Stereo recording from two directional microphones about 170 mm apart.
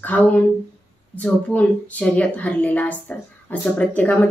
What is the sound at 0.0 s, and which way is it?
A woman's voice, 10° left (ahead or behind).